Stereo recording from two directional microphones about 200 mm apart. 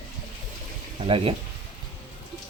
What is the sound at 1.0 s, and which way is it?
Speech, 25° right (ahead or behind).